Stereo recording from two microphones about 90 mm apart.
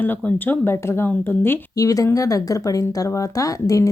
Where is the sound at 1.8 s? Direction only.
40° left (ahead or behind).